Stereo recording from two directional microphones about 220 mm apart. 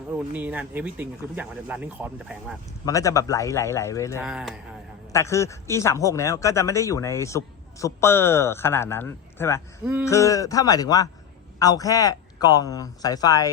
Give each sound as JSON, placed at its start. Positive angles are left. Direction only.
{"t": 0.2, "sound": "speech", "side_deg": -5}
{"t": 2.8, "sound": "a man's voice", "side_deg": 15}
{"t": 4.2, "sound": "speech", "side_deg": -5}
{"t": 5.1, "sound": "a man's voice", "side_deg": 15}
{"t": 9.8, "sound": "speech", "side_deg": -5}
{"t": 10.1, "sound": "a man's voice", "side_deg": 15}